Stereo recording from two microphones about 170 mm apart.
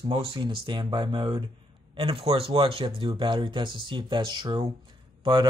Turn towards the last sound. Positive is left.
turn(degrees=-25)  # may be behind; listen again after turning